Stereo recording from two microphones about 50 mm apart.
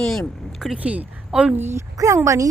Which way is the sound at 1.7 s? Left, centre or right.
Right.